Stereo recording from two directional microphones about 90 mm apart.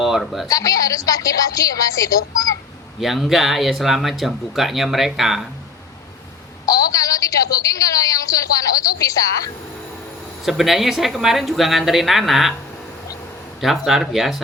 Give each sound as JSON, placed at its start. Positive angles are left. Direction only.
{"t": 0.0, "sound": "speech", "side_deg": 0}
{"t": 0.4, "sound": "a woman's voice", "side_deg": 40}
{"t": 3.0, "sound": "speech", "side_deg": -5}
{"t": 6.7, "sound": "a sound", "side_deg": 40}
{"t": 10.4, "sound": "speech", "side_deg": 0}
{"t": 13.6, "sound": "speech", "side_deg": 0}